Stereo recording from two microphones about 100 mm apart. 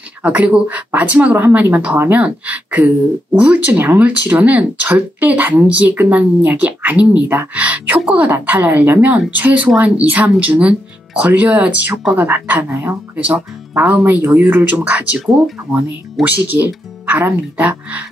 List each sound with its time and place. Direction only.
0.2 s speech: 15° right (ahead or behind)
16.3 s speech: 20° right (ahead or behind)